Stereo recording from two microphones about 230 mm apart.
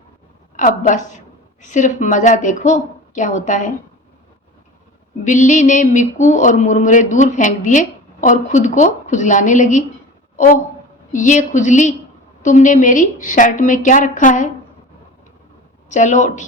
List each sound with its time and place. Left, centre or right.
0.5 s mantra: left
5.2 s mantra: left
10.3 s speech: left
11.1 s mantra: left
15.9 s mantra: left